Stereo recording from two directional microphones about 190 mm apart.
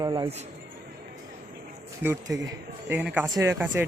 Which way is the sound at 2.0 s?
15° right (ahead or behind).